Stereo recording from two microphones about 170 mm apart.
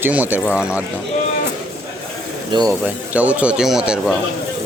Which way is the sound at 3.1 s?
10° right (ahead or behind).